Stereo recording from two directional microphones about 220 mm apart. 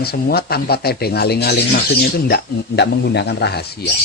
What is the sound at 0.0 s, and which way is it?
Speech, 45° left (ahead or behind).